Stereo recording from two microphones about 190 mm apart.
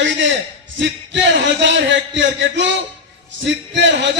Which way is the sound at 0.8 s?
70° right (ahead or behind).